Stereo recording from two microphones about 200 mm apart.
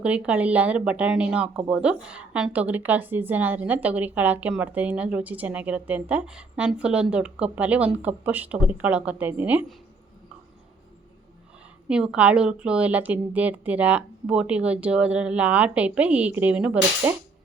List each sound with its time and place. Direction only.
0.0 s speech: 5° right (ahead or behind)
11.9 s speech: 5° right (ahead or behind)